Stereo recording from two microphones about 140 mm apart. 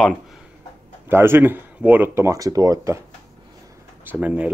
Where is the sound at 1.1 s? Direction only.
15° right (ahead or behind).